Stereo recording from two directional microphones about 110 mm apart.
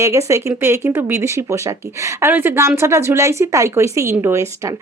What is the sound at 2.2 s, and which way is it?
Speech, 20° right (ahead or behind).